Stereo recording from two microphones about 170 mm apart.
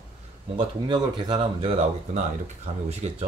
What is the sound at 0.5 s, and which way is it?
Speech, 25° right (ahead or behind).